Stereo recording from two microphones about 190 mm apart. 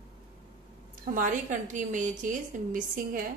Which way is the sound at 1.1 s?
40° right (ahead or behind).